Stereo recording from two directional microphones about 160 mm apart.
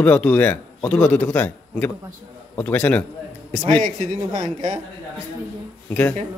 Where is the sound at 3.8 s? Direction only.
50° right (ahead or behind).